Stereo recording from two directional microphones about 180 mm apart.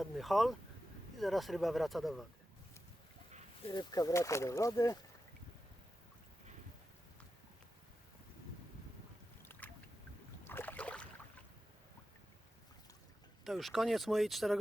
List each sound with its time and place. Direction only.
0.0 s speech: centre (ahead or behind)
3.7 s speech: 25° left (ahead or behind)
9.4 s a sound: 10° left (ahead or behind)
10.4 s boat: 10° left (ahead or behind)
13.4 s speech: centre (ahead or behind)